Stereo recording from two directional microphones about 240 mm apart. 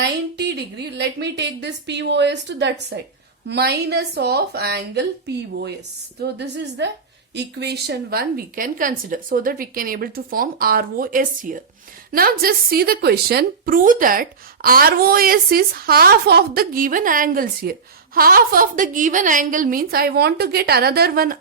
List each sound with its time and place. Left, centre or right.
0.0 s a woman's voice: right